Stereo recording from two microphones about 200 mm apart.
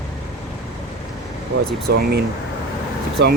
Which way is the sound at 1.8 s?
50° right (ahead or behind).